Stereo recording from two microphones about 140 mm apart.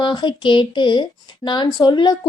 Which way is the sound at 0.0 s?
35° left (ahead or behind).